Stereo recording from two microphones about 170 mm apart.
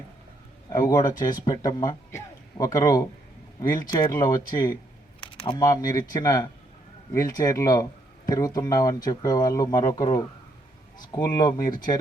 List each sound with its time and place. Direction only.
0.7 s speech: 20° left (ahead or behind)